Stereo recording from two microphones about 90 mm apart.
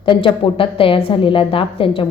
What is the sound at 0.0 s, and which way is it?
A woman's voice, 65° left (ahead or behind).